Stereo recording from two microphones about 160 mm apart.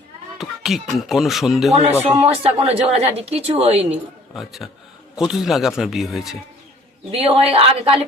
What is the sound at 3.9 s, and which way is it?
Speech, centre (ahead or behind).